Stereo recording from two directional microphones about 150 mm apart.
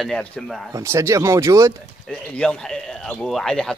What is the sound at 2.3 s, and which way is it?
Speech, 5° left (ahead or behind).